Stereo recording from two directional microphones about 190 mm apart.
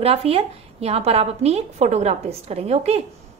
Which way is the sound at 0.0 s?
30° right (ahead or behind).